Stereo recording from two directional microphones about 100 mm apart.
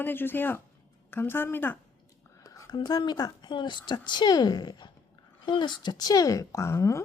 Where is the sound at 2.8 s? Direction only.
45° left (ahead or behind); by 7.0 s 30° left (ahead or behind).